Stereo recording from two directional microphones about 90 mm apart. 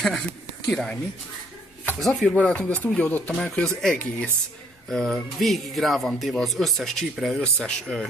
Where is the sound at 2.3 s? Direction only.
15° left (ahead or behind).